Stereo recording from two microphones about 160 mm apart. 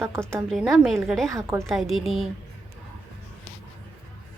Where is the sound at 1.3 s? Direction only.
15° right (ahead or behind).